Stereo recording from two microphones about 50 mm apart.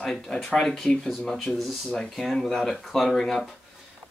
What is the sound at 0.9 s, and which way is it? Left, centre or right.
Speech, centre.